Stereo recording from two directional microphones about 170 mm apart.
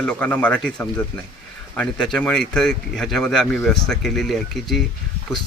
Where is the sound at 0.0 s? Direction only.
5° left (ahead or behind).